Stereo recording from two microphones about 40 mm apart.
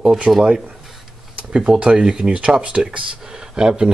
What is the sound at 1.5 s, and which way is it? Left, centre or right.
Speech, right.